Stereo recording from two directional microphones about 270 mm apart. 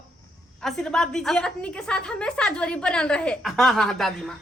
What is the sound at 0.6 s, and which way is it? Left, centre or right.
A woman's voice, centre.